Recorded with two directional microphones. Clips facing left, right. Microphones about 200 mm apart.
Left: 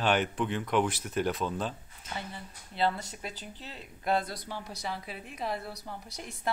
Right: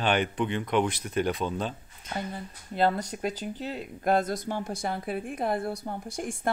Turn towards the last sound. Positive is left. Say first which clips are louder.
# right 7 dB
turn(degrees=-50)  # may be behind; listen again after turning